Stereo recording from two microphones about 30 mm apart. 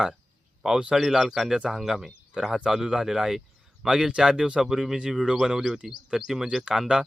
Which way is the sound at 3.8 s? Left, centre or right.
Right.